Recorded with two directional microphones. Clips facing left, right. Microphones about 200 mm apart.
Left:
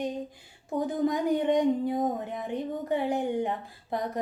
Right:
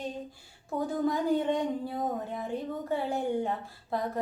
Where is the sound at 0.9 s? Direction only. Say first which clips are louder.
Left 1 dB; 15° left (ahead or behind).